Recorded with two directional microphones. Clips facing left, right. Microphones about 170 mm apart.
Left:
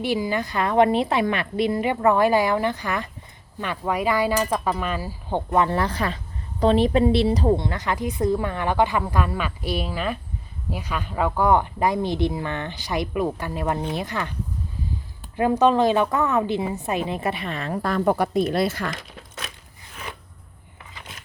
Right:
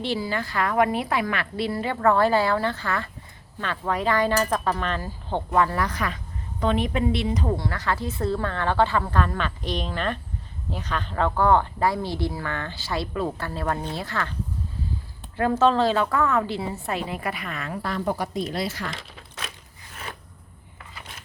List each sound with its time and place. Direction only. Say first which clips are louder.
0.0 s speech: left 3 dB; 15° left (ahead or behind)
5.5 s a woman's voice: left 2 dB; 25° left (ahead or behind)
15.4 s a woman's voice: left 2 dB; 15° left (ahead or behind)
17.8 s speech: left 6 dB; 55° left (ahead or behind)